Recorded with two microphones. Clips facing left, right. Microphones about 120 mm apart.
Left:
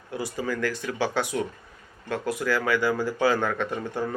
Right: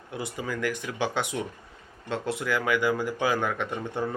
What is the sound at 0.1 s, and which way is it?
Speech, 20° right (ahead or behind).